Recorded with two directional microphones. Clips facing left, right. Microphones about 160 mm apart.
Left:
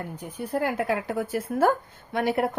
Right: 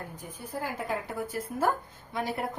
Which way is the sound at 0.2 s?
70° left (ahead or behind).